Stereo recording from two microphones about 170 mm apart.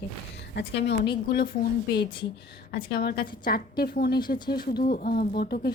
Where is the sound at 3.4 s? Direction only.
60° left (ahead or behind).